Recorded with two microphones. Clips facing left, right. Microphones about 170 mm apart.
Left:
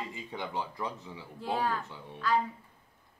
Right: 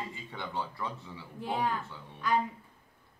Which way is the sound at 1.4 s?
20° right (ahead or behind).